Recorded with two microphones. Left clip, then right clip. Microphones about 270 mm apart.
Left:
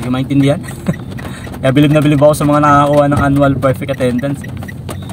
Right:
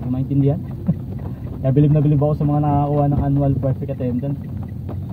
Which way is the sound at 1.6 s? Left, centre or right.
Left.